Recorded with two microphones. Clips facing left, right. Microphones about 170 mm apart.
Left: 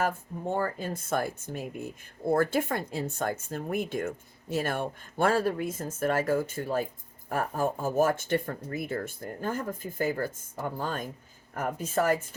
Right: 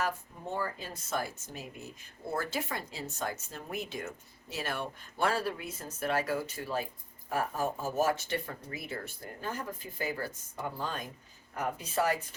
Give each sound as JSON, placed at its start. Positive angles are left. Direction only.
{"t": 0.0, "sound": "speech", "side_deg": 50}